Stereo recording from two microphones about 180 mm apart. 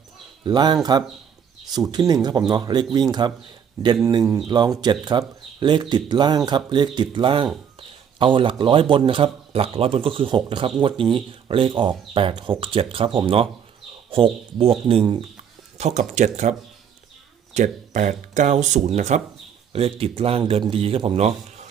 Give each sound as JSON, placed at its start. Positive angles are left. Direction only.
{"t": 0.4, "sound": "a man's voice", "side_deg": -25}